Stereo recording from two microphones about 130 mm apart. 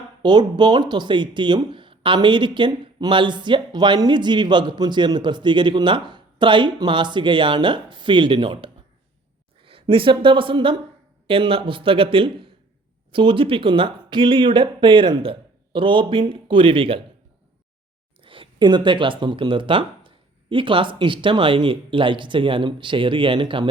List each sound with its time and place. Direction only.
0.2 s a woman's voice: 35° right (ahead or behind)
18.2 s speech: 40° right (ahead or behind)